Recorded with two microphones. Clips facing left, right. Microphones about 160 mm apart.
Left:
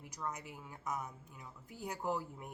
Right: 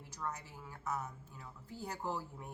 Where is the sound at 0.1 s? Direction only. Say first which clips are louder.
Even; 15° left (ahead or behind).